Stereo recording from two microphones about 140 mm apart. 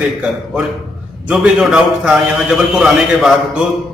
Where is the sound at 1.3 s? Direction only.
5° right (ahead or behind).